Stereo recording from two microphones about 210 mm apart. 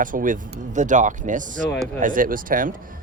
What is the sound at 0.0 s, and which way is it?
A man's voice, 40° right (ahead or behind).